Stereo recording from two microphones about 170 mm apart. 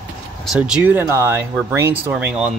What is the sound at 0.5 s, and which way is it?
Speech, 5° right (ahead or behind).